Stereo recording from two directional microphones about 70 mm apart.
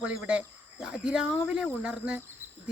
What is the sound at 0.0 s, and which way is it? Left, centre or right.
Speech, centre.